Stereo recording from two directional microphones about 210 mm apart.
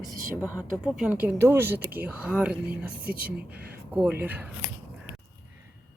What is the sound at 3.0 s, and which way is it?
Speech, 45° right (ahead or behind).